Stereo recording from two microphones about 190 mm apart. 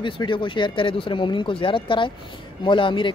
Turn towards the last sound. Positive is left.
turn(degrees=25)  # may be behind; listen again after turning